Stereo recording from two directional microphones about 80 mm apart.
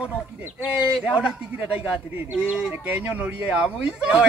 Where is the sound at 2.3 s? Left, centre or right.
Centre.